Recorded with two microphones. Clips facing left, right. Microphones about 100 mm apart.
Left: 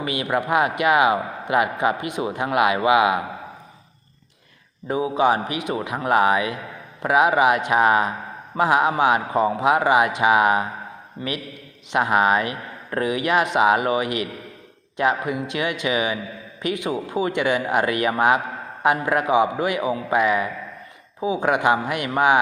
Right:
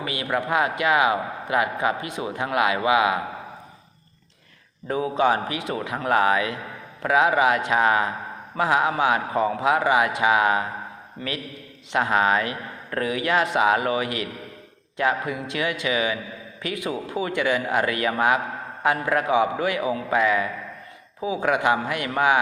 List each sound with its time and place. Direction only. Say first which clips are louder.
0.0 s a man's voice: left 3 dB; 20° left (ahead or behind)
4.9 s a man's voice: left 2 dB; 15° left (ahead or behind)
11.9 s a man's voice: left 2 dB; 20° left (ahead or behind)